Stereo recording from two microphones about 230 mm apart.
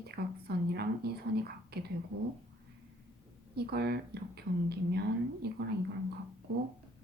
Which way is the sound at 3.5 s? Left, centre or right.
Right.